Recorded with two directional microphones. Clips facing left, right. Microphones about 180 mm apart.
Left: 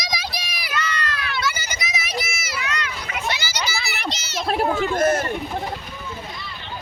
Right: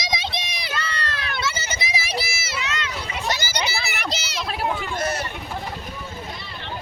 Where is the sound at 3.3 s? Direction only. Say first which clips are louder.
Right 2 dB; 50° right (ahead or behind).